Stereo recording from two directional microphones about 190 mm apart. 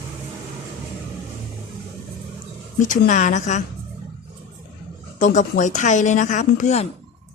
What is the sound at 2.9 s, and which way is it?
Speech, 40° left (ahead or behind).